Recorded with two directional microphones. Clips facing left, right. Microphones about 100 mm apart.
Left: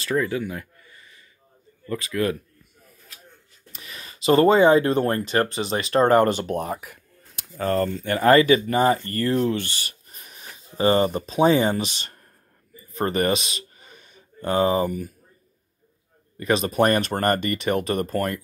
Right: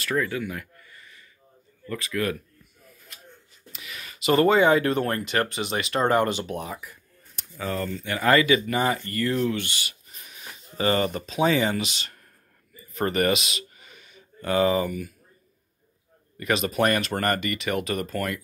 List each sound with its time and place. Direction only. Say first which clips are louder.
0.2 s a sound: left 3 dB; 30° left (ahead or behind)
1.9 s speech: left 3 dB; 30° left (ahead or behind)
3.7 s speech: even; 35° left (ahead or behind)
16.3 s speech: left 3 dB; 30° left (ahead or behind)